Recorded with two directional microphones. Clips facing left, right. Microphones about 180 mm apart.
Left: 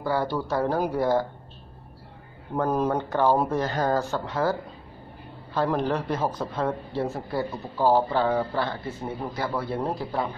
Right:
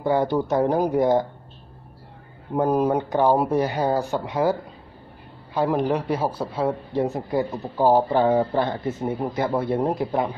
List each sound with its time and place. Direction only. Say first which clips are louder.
0.0 s speech: right 5 dB; 20° right (ahead or behind)
2.5 s speech: right 4 dB; 15° right (ahead or behind)